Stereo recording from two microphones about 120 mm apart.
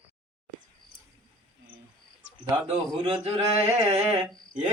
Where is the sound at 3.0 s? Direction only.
45° right (ahead or behind).